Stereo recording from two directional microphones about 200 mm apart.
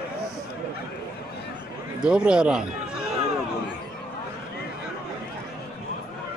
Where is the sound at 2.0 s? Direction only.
5° right (ahead or behind).